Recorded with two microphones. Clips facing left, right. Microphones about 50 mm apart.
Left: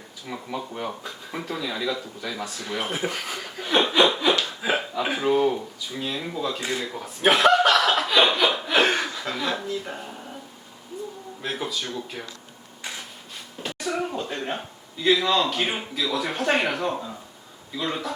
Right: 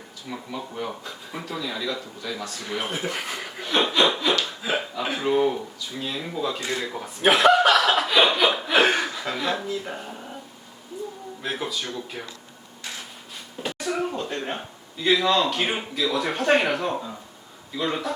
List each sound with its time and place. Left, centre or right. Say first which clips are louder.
0.3 s speech: left 2 dB; centre
3.6 s chuckle: left 2 dB; centre
4.6 s a sound: left 2 dB; centre
5.3 s speech: right 1 dB; centre
11.4 s speech: even; centre
13.6 s speech: right 1 dB; centre